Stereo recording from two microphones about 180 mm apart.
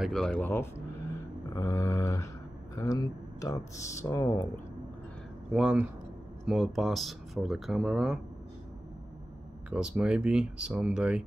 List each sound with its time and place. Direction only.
0.0 s speech: centre (ahead or behind); by 4.5 s 15° left (ahead or behind)
5.5 s speech: 5° right (ahead or behind)
9.7 s speech: 5° right (ahead or behind)